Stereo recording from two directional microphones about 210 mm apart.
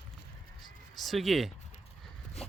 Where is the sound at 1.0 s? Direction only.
Centre (ahead or behind).